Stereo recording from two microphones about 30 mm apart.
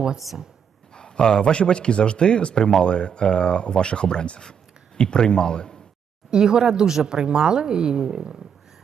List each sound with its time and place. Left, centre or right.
0.3 s speech: centre
0.9 s speech: left
6.3 s a woman's voice: right